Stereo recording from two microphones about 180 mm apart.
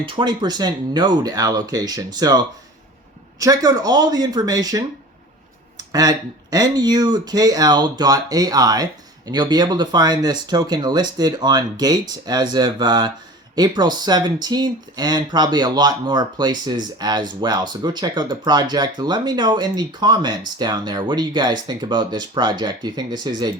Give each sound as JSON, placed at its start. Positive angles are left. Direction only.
{"t": 0.0, "sound": "speech", "side_deg": -25}